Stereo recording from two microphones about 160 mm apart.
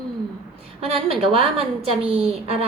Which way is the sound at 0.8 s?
35° right (ahead or behind).